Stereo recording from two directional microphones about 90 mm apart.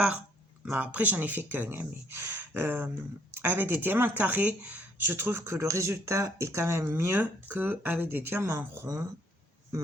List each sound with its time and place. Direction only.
0.6 s speech: 15° right (ahead or behind)